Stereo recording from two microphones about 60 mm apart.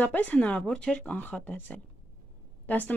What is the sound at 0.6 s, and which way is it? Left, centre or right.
Speech, centre.